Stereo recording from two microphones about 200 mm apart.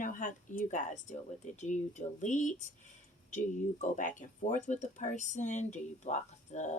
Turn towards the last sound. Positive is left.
turn(degrees=35)  # may be behind; listen again after turning